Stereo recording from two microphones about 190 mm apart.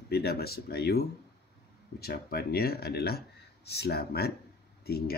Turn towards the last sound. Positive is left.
turn(degrees=55)  # may be behind; listen again after turning